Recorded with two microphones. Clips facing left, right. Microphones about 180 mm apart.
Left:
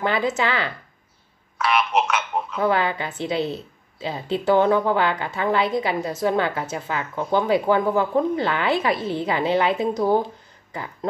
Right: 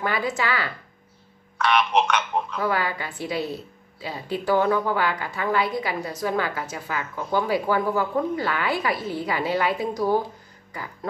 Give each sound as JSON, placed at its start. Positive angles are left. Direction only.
{"t": 0.0, "sound": "speech", "side_deg": 25}
{"t": 1.6, "sound": "speech", "side_deg": 5}
{"t": 2.6, "sound": "speech", "side_deg": 25}